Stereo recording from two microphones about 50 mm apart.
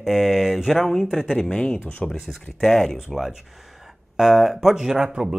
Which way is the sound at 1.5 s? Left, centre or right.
Centre.